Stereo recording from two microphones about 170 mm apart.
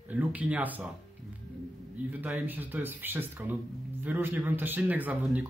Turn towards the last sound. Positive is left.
turn(degrees=-10)  # may be behind; listen again after turning